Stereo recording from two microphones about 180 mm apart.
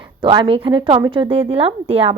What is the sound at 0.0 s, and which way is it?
A woman's voice, 25° right (ahead or behind).